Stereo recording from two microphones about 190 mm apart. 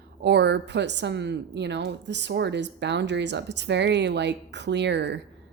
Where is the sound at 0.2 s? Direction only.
60° right (ahead or behind).